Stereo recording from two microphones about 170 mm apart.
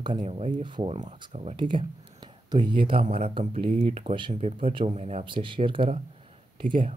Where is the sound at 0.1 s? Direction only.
35° right (ahead or behind).